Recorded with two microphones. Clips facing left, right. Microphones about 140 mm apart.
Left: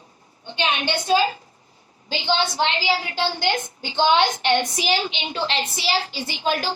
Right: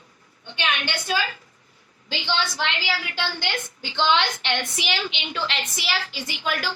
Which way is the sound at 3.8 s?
45° left (ahead or behind).